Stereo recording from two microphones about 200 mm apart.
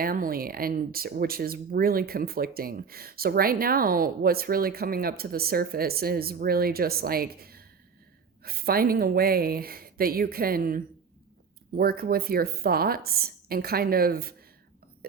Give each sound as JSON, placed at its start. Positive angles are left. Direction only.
{"t": 0.0, "sound": "speech", "side_deg": -45}